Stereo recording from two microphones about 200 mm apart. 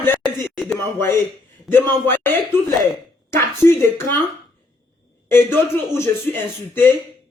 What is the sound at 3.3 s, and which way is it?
Speech, 10° left (ahead or behind).